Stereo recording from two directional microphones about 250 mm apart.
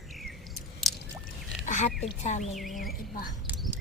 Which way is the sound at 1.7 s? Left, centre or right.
Left.